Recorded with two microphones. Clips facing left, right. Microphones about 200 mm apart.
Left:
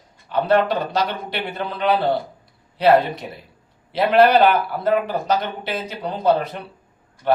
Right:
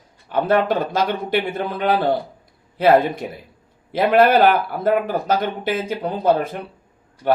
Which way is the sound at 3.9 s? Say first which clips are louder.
Even; 50° right (ahead or behind).